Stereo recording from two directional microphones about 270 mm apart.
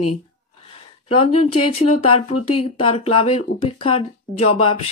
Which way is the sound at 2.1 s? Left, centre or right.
Left.